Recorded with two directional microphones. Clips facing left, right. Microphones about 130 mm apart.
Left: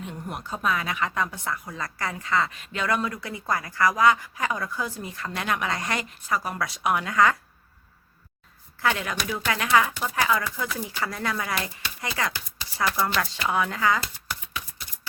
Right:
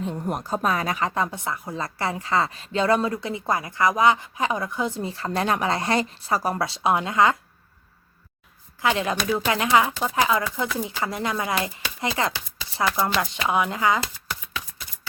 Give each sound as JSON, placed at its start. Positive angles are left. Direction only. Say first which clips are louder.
{"t": 0.0, "sound": "a woman's voice", "louder": "right 7 dB", "side_deg": -35}
{"t": 8.8, "sound": "a woman's voice", "louder": "right 3 dB", "side_deg": -20}